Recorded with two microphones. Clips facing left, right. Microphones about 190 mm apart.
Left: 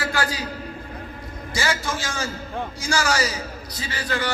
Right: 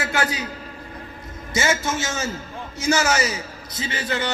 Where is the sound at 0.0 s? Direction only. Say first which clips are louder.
Right 1 dB; 20° right (ahead or behind).